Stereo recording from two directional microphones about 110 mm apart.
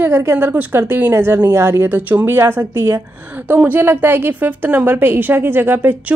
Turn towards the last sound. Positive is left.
turn(degrees=-20)  # may be behind; listen again after turning